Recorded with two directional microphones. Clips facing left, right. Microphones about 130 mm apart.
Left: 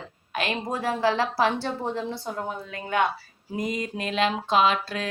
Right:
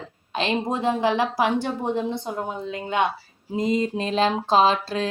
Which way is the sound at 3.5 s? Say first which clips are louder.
Right 6 dB; 25° right (ahead or behind).